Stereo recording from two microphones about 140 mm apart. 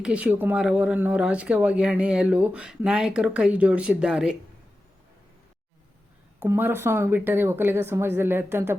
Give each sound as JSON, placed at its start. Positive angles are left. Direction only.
{"t": 0.0, "sound": "speech", "side_deg": -10}
{"t": 6.4, "sound": "speech", "side_deg": -15}